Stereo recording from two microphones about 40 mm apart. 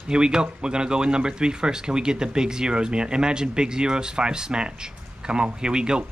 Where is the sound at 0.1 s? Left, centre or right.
Right.